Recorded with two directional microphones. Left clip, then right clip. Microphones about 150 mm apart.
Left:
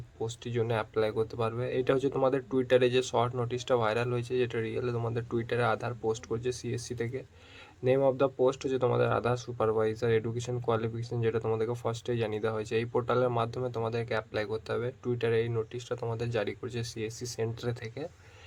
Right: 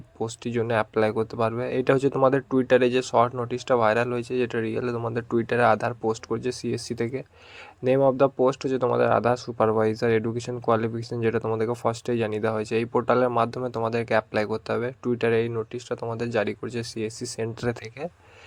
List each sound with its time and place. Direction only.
0.2 s speech: 40° right (ahead or behind)